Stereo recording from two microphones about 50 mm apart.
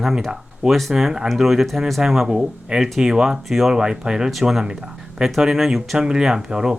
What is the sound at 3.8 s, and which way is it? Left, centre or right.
Speech, centre.